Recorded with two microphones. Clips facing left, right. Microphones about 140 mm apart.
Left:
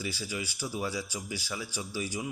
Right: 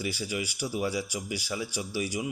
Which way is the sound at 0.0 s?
20° right (ahead or behind).